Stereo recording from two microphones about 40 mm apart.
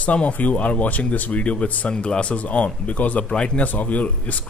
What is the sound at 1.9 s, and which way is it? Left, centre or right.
Speech, left.